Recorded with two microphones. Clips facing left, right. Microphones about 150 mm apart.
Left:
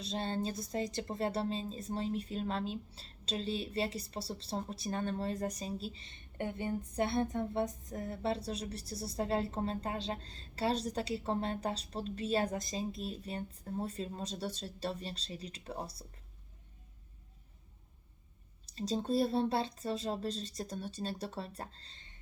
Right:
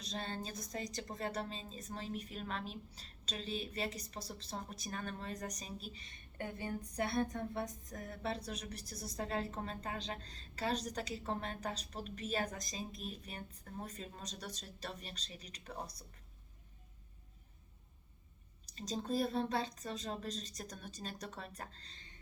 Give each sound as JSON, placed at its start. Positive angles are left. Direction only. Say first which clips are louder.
{"t": 0.0, "sound": "a woman's voice", "louder": "left 7 dB", "side_deg": 30}
{"t": 18.7, "sound": "speech", "louder": "left 5 dB", "side_deg": 30}